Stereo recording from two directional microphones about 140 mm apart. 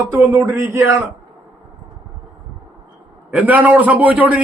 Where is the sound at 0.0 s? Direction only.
20° right (ahead or behind).